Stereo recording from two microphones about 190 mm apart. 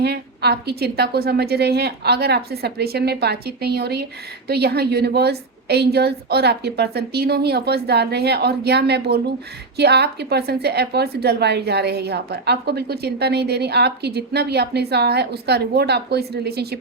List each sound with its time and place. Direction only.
0.0 s a woman's voice: 60° right (ahead or behind)